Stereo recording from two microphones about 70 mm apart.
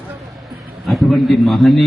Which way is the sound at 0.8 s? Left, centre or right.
Centre.